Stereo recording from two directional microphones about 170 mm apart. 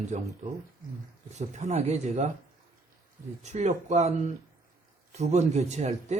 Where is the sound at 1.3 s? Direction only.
45° right (ahead or behind).